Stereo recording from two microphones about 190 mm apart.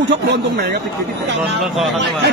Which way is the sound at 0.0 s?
70° right (ahead or behind).